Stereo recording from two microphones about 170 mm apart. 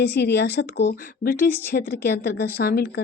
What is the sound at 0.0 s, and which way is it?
Speech, 75° left (ahead or behind).